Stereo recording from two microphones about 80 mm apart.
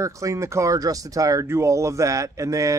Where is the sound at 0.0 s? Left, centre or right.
Right.